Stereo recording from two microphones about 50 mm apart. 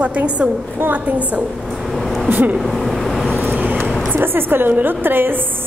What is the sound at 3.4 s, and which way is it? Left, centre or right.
Vehicle, right.